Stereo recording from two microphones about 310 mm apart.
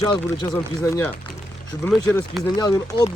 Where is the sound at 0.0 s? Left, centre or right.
Centre.